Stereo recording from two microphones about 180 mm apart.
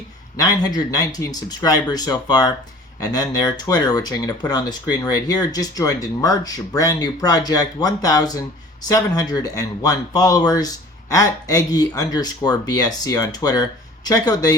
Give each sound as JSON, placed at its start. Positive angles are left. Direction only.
{"t": 0.3, "sound": "speech", "side_deg": 20}